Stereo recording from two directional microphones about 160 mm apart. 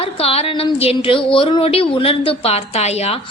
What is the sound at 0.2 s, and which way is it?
Speech, 35° left (ahead or behind).